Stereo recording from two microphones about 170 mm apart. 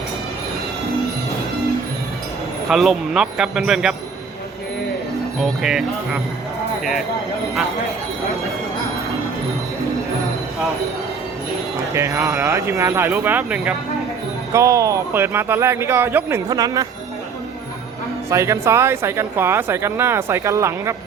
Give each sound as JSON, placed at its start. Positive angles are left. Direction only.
{"t": 2.6, "sound": "speech", "side_deg": 0}
{"t": 5.4, "sound": "speech", "side_deg": 0}
{"t": 11.9, "sound": "speech", "side_deg": -15}
{"t": 18.3, "sound": "speech", "side_deg": -15}